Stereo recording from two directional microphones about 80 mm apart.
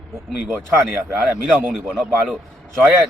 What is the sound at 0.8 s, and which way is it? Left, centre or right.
Speech, right.